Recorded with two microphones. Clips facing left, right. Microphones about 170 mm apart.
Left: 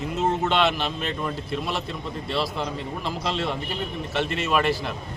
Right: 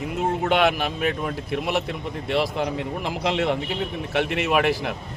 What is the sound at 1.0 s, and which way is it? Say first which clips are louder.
Speech: right 4 dB; 60° right (ahead or behind).